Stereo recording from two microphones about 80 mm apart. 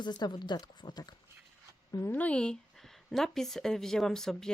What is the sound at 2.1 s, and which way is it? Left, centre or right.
Speech, centre.